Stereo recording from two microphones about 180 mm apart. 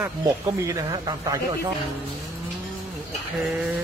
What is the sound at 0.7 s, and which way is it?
Speech, 20° right (ahead or behind).